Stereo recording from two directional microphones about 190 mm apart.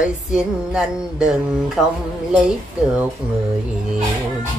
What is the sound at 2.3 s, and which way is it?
Speech, 5° right (ahead or behind).